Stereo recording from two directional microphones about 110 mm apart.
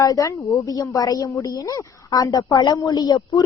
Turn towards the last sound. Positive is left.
turn(degrees=35)  # may be behind; listen again after turning